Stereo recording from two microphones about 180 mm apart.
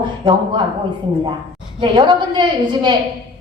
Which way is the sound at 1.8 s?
25° right (ahead or behind).